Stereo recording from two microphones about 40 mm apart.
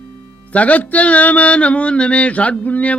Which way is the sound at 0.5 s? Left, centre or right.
Left.